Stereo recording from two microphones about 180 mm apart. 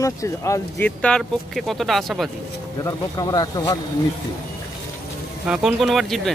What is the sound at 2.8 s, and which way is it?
Speech, 20° left (ahead or behind).